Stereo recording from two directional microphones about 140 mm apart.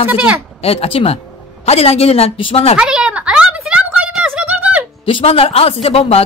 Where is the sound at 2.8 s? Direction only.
5° right (ahead or behind).